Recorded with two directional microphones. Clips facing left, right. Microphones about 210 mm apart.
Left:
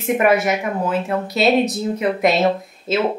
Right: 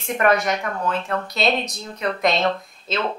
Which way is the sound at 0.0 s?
5° left (ahead or behind).